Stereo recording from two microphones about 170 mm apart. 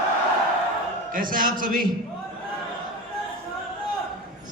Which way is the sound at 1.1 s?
55° right (ahead or behind).